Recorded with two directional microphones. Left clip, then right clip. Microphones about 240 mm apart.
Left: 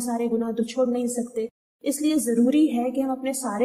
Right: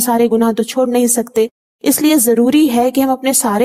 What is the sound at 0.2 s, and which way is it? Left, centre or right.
Speech, right.